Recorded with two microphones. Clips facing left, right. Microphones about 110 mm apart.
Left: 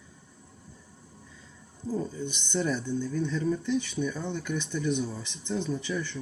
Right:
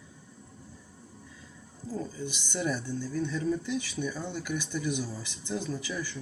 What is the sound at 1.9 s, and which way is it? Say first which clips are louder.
Speech: left 3 dB; centre (ahead or behind).